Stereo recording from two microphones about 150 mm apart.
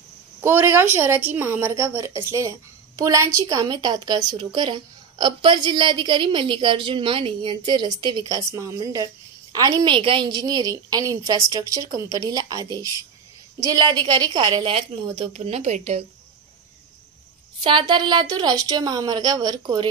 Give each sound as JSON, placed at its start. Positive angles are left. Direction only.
{"t": 0.4, "sound": "a woman's voice", "side_deg": -15}
{"t": 17.6, "sound": "a woman's voice", "side_deg": -35}